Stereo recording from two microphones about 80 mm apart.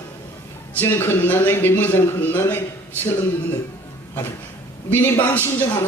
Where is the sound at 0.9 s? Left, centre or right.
Left.